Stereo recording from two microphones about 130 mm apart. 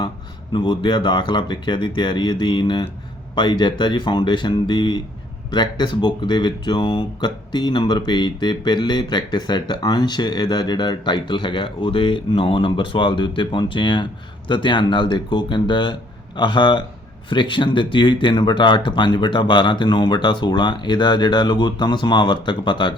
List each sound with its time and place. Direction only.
0.5 s speech: 40° left (ahead or behind)